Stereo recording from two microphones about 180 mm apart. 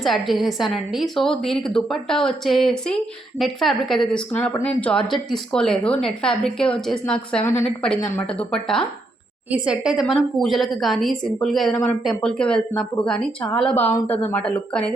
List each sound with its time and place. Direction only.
0.0 s a woman's voice: centre (ahead or behind)